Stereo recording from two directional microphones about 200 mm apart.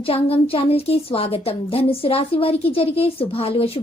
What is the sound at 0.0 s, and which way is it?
A woman's voice, 30° left (ahead or behind).